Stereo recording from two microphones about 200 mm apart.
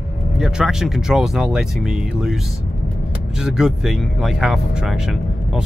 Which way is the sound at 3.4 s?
Centre (ahead or behind).